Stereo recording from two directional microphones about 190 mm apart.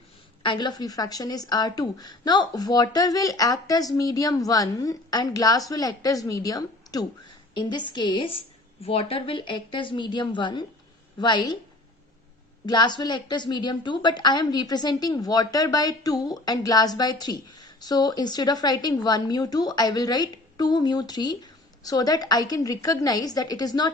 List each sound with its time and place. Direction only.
0.4 s a woman's voice: 25° left (ahead or behind)
12.6 s a woman's voice: 20° left (ahead or behind)